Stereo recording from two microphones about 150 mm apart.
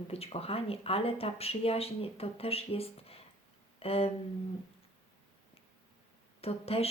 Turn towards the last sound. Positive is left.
turn(degrees=40)  # may be behind; listen again after turning